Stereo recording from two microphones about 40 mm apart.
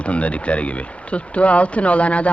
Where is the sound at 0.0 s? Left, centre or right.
Left.